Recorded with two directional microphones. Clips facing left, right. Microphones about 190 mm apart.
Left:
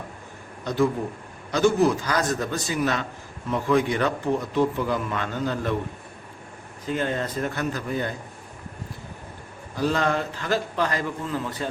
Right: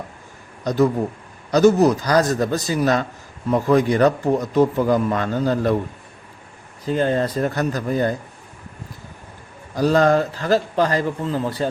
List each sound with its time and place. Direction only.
0.7 s speech: 40° right (ahead or behind)
6.8 s speech: 35° right (ahead or behind)
9.7 s speech: 40° right (ahead or behind)